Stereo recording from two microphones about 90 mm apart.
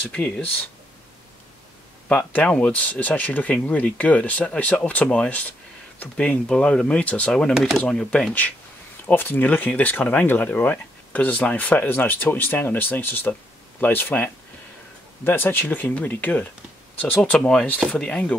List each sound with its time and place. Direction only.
0.1 s speech: 15° left (ahead or behind)
2.0 s speech: 10° left (ahead or behind)
9.0 s speech: 20° left (ahead or behind)